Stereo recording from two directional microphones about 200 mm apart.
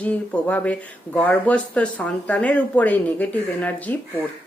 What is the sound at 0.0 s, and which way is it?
Speech, 10° left (ahead or behind).